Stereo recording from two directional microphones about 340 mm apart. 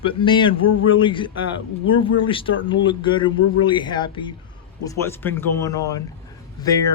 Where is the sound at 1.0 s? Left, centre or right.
Centre.